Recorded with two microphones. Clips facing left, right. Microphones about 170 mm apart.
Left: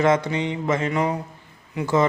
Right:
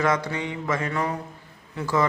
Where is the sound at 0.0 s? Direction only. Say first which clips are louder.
Left 5 dB; 25° left (ahead or behind).